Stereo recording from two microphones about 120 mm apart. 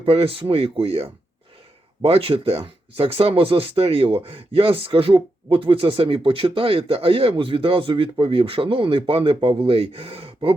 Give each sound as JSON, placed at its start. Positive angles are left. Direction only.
{"t": 0.0, "sound": "speech", "side_deg": -50}